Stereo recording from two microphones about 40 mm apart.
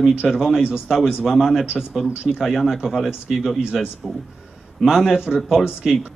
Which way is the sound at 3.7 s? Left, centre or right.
Centre.